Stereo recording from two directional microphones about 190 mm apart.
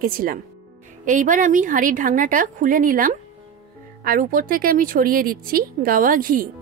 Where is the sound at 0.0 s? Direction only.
50° right (ahead or behind).